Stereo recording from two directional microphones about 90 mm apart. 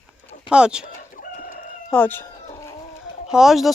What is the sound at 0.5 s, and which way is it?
Speech, 10° right (ahead or behind).